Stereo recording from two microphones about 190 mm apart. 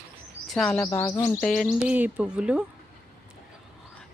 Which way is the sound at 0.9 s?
20° left (ahead or behind).